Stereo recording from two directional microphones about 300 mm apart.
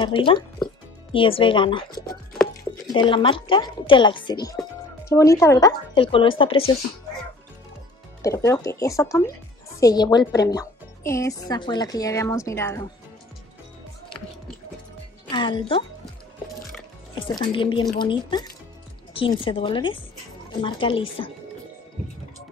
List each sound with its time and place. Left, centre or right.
0.0 s a woman's voice: centre
8.2 s a woman's voice: centre
15.2 s a woman's voice: centre
17.4 s a woman's voice: centre